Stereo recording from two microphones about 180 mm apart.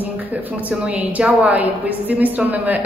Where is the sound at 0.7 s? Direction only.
10° right (ahead or behind).